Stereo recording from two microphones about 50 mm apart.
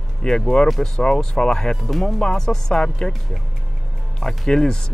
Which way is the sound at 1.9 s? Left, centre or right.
Centre.